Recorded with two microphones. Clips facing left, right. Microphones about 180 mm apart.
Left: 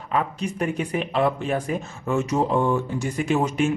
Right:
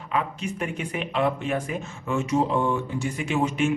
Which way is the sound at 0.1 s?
40° left (ahead or behind).